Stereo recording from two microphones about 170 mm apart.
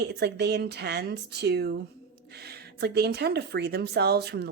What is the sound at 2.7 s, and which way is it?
Speech, 75° right (ahead or behind).